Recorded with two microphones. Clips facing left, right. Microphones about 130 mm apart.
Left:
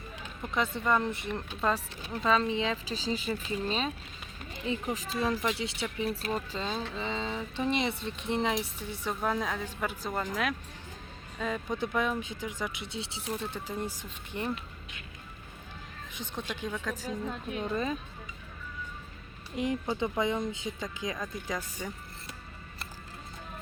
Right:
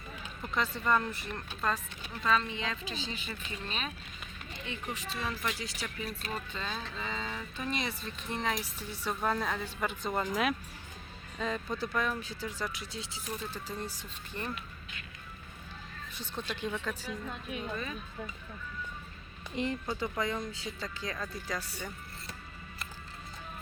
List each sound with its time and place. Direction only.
0.4 s speech: 20° left (ahead or behind); by 4.8 s 35° left (ahead or behind)
5.4 s speech: 25° left (ahead or behind)
9.2 s speech: 5° left (ahead or behind)
10.1 s speech: 5° right (ahead or behind)
11.3 s speech: 10° left (ahead or behind)
11.8 s speech: 20° left (ahead or behind)
16.1 s speech: 15° left (ahead or behind)
17.1 s speech: 30° left (ahead or behind)
19.5 s speech: 15° left (ahead or behind)